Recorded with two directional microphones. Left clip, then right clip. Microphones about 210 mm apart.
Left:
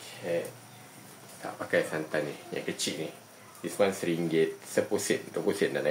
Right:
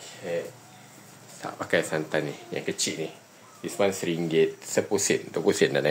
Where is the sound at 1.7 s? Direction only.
50° right (ahead or behind).